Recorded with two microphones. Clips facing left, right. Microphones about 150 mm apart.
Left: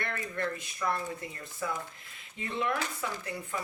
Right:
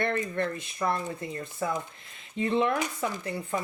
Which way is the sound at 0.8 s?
35° right (ahead or behind).